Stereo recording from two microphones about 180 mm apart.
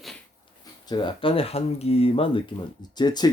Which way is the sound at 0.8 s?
25° left (ahead or behind).